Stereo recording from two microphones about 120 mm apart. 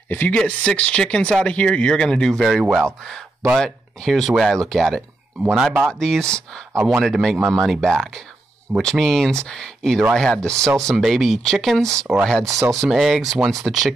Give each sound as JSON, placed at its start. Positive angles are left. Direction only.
{"t": 0.1, "sound": "speech", "side_deg": 15}
{"t": 6.7, "sound": "speech", "side_deg": -25}
{"t": 7.0, "sound": "speech", "side_deg": 0}
{"t": 10.5, "sound": "speech", "side_deg": -25}
{"t": 11.0, "sound": "speech", "side_deg": 0}
{"t": 12.4, "sound": "speech", "side_deg": -25}
{"t": 12.8, "sound": "speech", "side_deg": 0}